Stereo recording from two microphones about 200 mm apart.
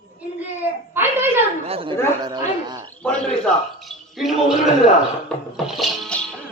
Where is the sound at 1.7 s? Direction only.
25° right (ahead or behind).